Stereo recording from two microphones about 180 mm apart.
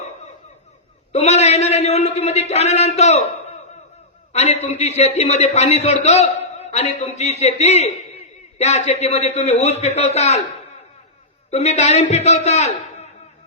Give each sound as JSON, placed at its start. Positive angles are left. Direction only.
{"t": 1.1, "sound": "a sound", "side_deg": 40}
{"t": 4.3, "sound": "a man's voice", "side_deg": 40}
{"t": 11.5, "sound": "a man's voice", "side_deg": 40}